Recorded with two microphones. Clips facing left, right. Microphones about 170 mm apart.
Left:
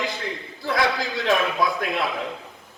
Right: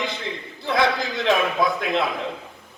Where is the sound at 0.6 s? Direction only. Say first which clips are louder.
Right 2 dB; 20° right (ahead or behind).